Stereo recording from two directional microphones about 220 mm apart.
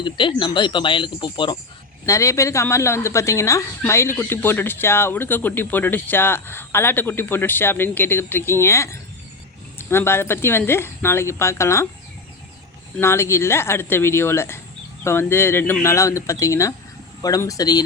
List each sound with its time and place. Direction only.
0.0 s speech: 20° left (ahead or behind)
13.0 s speech: 10° left (ahead or behind)